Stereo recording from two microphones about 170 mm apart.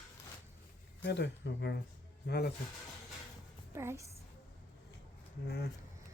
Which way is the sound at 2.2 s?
70° left (ahead or behind).